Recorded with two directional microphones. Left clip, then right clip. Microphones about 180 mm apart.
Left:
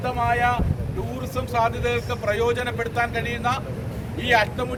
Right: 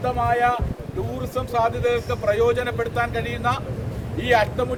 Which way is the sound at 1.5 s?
15° right (ahead or behind).